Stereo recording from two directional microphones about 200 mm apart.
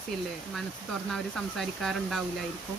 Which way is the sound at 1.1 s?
Centre (ahead or behind).